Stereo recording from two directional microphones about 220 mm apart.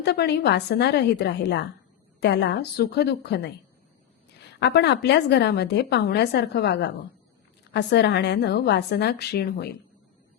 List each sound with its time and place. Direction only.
0.0 s a woman's voice: 50° left (ahead or behind)